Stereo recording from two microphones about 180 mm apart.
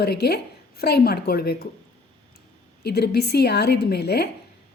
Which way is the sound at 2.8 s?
65° left (ahead or behind).